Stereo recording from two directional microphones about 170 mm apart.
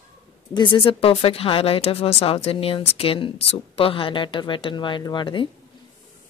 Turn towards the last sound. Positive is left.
turn(degrees=30)  # may be behind; listen again after turning